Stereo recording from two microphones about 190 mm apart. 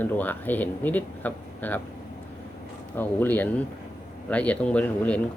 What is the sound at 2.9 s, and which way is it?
Speech, 10° left (ahead or behind).